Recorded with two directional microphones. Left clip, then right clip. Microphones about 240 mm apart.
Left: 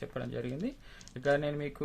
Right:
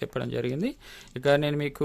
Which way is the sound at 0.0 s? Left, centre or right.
Right.